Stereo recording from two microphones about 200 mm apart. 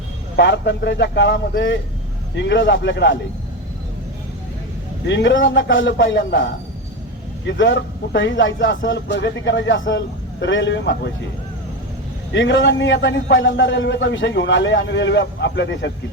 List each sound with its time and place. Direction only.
0.3 s a man's voice: 60° left (ahead or behind)
5.0 s a man's voice: 65° left (ahead or behind)
12.3 s a man's voice: 65° left (ahead or behind)